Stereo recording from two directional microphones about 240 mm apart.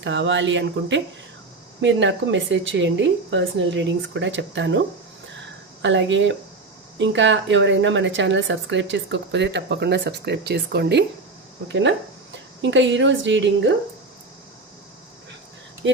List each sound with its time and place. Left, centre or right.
0.0 s speech: right
5.8 s speech: right